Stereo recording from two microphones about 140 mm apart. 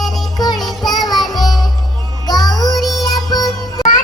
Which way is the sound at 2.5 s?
30° left (ahead or behind).